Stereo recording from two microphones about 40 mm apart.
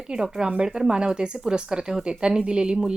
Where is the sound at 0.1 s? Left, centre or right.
Right.